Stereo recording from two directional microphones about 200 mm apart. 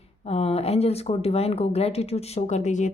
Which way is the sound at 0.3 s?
30° left (ahead or behind).